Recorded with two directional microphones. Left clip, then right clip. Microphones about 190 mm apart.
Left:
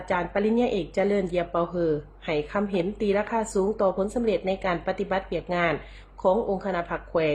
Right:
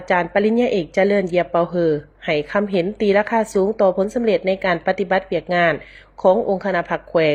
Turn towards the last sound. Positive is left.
turn(degrees=-30)  # may be behind; listen again after turning